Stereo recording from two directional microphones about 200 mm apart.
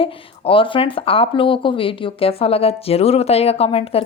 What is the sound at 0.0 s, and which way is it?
Speech, 25° left (ahead or behind).